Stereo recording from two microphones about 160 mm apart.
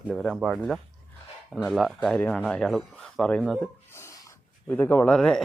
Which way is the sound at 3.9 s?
15° left (ahead or behind).